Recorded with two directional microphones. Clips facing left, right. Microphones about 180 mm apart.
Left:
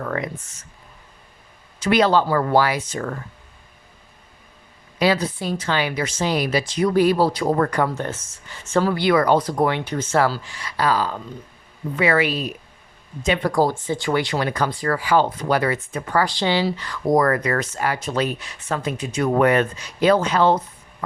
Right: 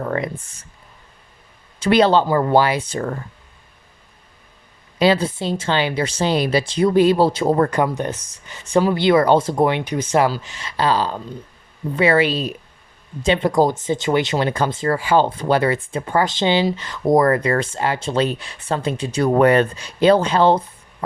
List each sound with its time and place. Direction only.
0.0 s speech: 30° right (ahead or behind)
1.8 s speech: 30° right (ahead or behind)
4.9 s speech: 25° right (ahead or behind)